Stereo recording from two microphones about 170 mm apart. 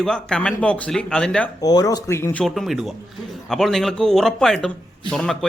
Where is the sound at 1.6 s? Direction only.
20° left (ahead or behind); by 5.4 s 5° left (ahead or behind).